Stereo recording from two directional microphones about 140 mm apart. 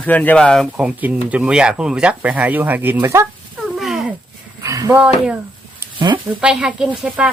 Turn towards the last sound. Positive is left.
turn(degrees=-10)  # may be behind; listen again after turning